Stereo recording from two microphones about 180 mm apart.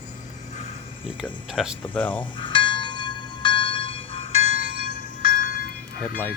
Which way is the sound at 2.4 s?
25° left (ahead or behind).